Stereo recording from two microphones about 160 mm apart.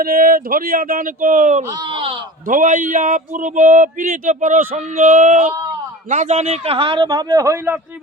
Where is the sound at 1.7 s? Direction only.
20° right (ahead or behind).